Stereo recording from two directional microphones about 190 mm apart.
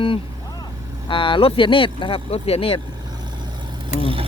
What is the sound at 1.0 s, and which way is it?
Speech, 25° left (ahead or behind).